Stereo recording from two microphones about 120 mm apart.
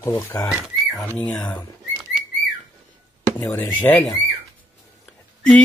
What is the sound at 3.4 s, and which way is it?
Speech, 20° left (ahead or behind).